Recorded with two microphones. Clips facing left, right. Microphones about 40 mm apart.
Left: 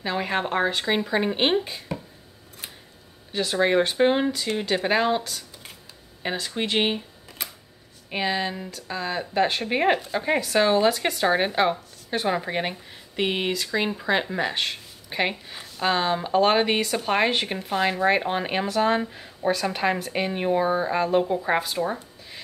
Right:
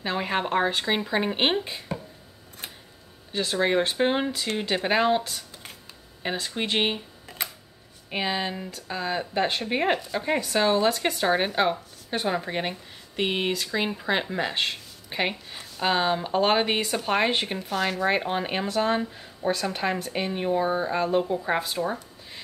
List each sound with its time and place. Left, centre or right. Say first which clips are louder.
0.0 s speech: left 1 dB; centre
3.3 s speech: left 2 dB; centre
6.2 s speech: left 1 dB; centre
8.1 s speech: left 2 dB; centre
17.7 s speech: left 3 dB; left
18.0 s speech: left 3 dB; centre
20.6 s speech: left 2 dB; centre
21.1 s speech: left 2 dB; centre